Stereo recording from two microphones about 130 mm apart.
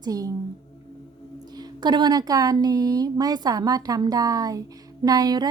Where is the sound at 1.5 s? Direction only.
30° right (ahead or behind).